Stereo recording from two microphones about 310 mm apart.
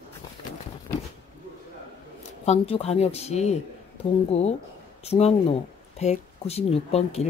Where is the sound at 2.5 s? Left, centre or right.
Centre.